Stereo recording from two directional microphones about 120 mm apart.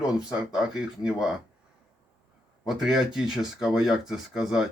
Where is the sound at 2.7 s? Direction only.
5° right (ahead or behind).